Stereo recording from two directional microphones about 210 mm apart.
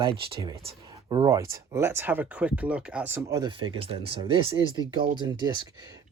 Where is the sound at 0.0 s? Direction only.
25° right (ahead or behind).